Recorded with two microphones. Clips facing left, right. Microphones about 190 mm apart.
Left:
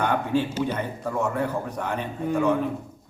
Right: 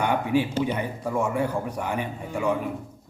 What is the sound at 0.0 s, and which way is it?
A man's voice, 15° right (ahead or behind).